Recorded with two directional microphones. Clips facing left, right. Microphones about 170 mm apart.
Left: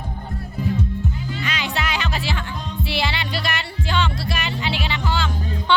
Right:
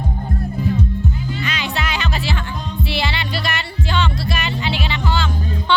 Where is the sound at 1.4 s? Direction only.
10° left (ahead or behind).